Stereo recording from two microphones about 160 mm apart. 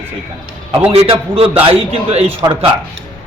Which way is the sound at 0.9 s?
35° right (ahead or behind).